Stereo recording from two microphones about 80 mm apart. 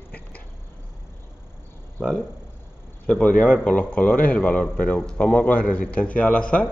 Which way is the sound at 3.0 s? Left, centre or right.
Centre.